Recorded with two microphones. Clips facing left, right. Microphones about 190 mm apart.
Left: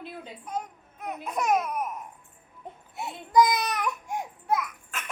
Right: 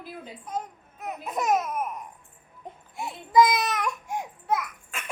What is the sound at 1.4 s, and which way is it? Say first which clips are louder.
Laughter: right 1 dB; 5° right (ahead or behind).